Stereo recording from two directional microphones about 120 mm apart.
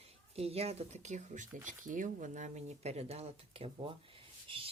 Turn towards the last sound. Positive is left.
turn(degrees=-45)  # may be behind; listen again after turning